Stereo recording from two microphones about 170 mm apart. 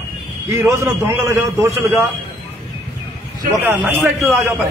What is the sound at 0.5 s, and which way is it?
A man's voice, 15° right (ahead or behind).